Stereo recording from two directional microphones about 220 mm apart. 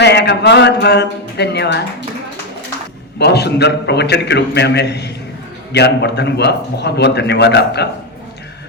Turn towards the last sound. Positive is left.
turn(degrees=50)  # may be behind; listen again after turning